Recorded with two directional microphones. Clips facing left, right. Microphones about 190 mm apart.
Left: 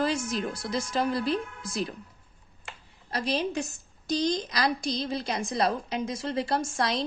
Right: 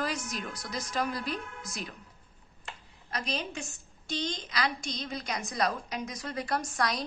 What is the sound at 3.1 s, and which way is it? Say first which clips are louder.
A woman's voice: left 7 dB; 30° left (ahead or behind).